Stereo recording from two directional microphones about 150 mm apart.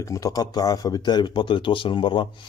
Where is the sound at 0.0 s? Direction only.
25° left (ahead or behind).